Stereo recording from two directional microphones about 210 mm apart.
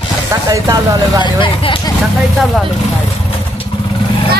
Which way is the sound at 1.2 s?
25° left (ahead or behind).